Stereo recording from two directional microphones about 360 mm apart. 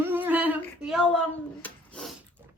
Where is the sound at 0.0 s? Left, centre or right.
Centre.